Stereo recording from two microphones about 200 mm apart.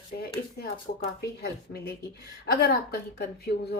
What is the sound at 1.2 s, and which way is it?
A woman's voice, 55° left (ahead or behind).